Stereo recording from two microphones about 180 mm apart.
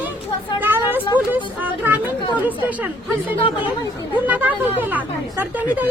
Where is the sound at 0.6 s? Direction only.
10° right (ahead or behind).